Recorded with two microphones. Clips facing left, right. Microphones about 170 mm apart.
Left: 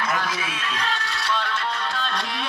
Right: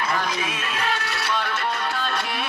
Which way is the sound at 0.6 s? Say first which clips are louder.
Right 2 dB; 10° right (ahead or behind).